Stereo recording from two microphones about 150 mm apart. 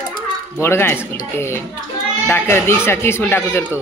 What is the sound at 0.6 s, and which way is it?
Speech, 15° left (ahead or behind).